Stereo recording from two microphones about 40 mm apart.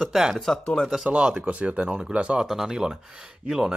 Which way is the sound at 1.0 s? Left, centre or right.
Right.